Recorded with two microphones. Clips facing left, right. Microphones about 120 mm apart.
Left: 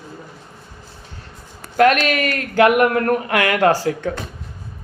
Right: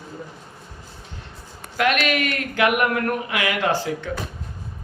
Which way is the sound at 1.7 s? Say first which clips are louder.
Left 6 dB; 40° left (ahead or behind).